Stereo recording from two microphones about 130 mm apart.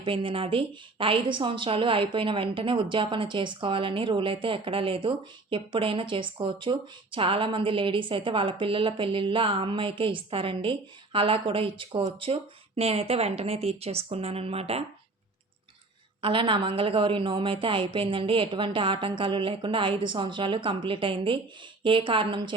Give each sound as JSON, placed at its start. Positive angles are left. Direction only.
{"t": 0.0, "sound": "a woman's voice", "side_deg": -40}
{"t": 16.2, "sound": "a woman's voice", "side_deg": -40}